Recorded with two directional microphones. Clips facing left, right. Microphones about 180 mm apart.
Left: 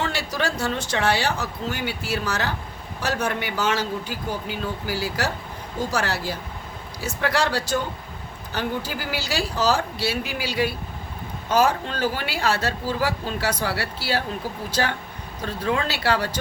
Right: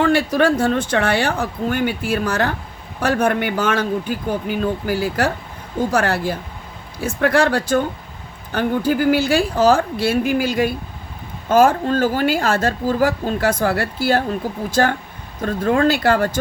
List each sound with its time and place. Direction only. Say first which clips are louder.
0.0 s a woman's voice: right 10 dB; 55° right (ahead or behind)